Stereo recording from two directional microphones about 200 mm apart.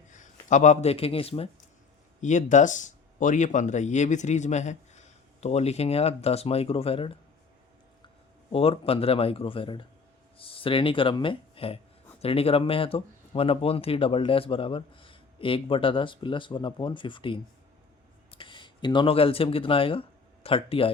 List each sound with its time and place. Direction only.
0.1 s a man's voice: 40° left (ahead or behind)
8.5 s speech: 30° left (ahead or behind)